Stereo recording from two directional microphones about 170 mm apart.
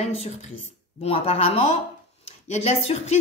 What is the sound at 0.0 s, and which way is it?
A man's voice, 40° left (ahead or behind).